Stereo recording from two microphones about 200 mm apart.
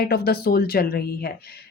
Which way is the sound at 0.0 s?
50° left (ahead or behind).